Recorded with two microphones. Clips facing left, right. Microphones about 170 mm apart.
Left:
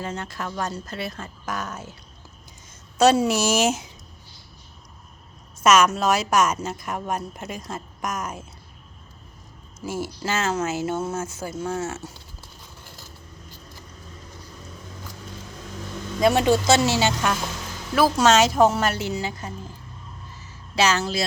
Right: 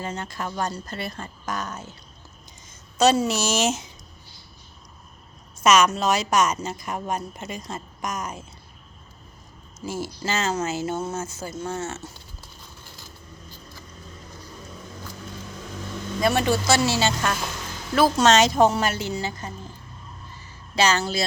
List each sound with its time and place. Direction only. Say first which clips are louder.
0.0 s a woman's voice: even; centre (ahead or behind)
3.0 s speech: left 2 dB; 10° left (ahead or behind)
5.6 s a woman's voice: left 1 dB; 5° left (ahead or behind)
9.8 s a woman's voice: left 1 dB; centre (ahead or behind)
16.2 s a woman's voice: left 3 dB; 15° left (ahead or behind)
20.3 s a sound: even; 5° left (ahead or behind)